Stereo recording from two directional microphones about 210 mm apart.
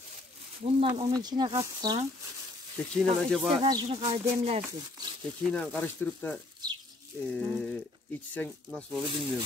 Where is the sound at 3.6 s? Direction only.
20° right (ahead or behind).